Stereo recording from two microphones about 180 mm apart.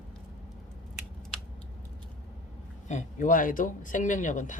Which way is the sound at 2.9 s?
45° left (ahead or behind).